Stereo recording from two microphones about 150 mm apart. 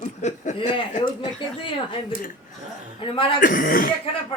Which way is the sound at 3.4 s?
65° left (ahead or behind).